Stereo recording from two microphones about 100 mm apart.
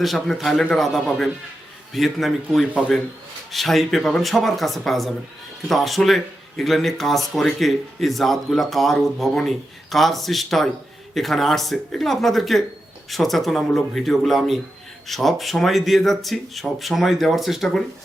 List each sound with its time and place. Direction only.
0.0 s speech: centre (ahead or behind)